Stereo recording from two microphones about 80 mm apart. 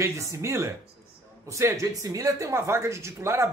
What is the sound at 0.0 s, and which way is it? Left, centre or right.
Speech, right.